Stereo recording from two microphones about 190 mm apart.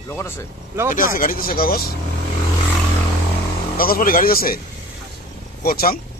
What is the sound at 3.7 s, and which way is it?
Speech, 50° left (ahead or behind).